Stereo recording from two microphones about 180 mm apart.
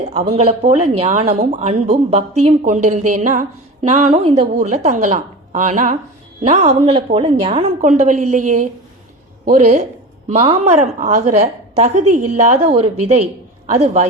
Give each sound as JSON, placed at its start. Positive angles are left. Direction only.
{"t": 0.1, "sound": "speech", "side_deg": -35}